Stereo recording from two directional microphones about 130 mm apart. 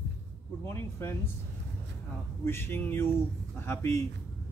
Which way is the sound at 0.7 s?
20° left (ahead or behind).